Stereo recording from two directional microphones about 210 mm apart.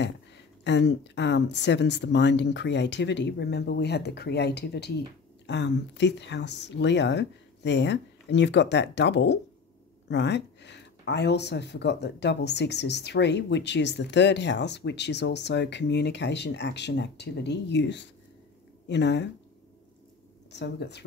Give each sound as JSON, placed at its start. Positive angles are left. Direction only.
{"t": 0.7, "sound": "speech", "side_deg": 55}
{"t": 20.5, "sound": "speech", "side_deg": 55}